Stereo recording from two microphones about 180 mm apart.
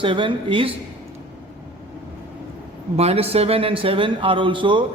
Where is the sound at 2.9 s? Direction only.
35° right (ahead or behind).